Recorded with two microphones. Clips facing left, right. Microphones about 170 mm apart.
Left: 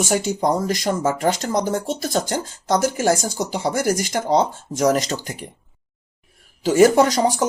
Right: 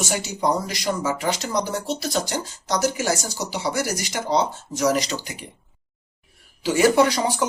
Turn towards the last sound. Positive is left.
turn(degrees=40)  # may be behind; listen again after turning